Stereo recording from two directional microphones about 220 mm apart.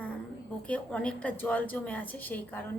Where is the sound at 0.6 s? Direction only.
5° left (ahead or behind).